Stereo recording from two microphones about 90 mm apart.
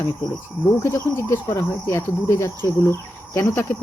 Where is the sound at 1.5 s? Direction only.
40° left (ahead or behind).